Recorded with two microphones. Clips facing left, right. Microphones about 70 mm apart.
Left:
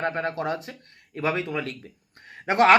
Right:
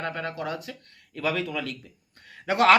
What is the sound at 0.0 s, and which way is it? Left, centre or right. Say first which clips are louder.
Speech: left 4 dB; left.